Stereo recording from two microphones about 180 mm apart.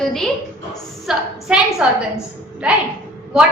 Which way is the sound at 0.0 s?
Centre (ahead or behind).